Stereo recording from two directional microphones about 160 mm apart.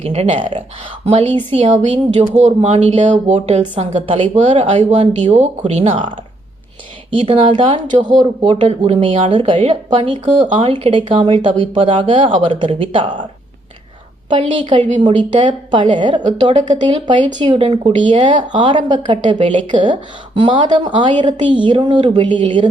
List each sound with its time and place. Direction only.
0.0 s speech: 40° right (ahead or behind)
7.1 s speech: 30° right (ahead or behind)
14.3 s a woman's voice: 30° right (ahead or behind)